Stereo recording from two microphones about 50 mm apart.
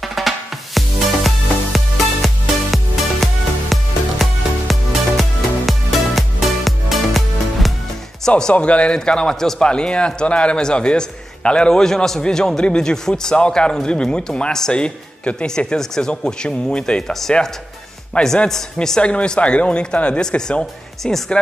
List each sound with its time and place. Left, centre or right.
0.0 s music: centre
8.4 s a man's voice: centre
18.5 s a man's voice: centre